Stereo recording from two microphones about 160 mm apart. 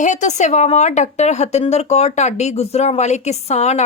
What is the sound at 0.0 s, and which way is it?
A woman's voice, 50° left (ahead or behind).